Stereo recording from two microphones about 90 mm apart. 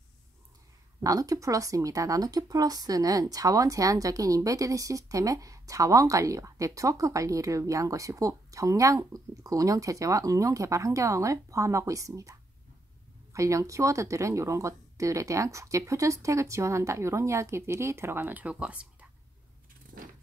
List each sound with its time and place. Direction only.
1.0 s speech: 40° right (ahead or behind)
18.2 s speech: 15° right (ahead or behind)